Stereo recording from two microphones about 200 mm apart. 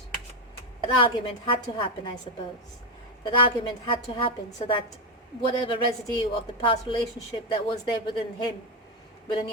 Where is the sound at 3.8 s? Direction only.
25° left (ahead or behind).